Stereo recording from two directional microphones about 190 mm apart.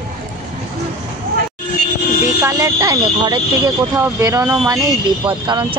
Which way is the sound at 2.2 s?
15° right (ahead or behind).